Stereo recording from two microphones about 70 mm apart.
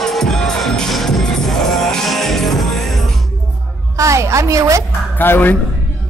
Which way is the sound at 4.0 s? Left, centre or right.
Right.